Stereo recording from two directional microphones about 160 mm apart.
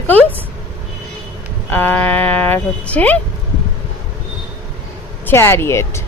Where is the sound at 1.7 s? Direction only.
10° left (ahead or behind).